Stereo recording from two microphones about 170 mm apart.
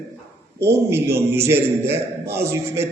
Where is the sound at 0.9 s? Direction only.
15° right (ahead or behind).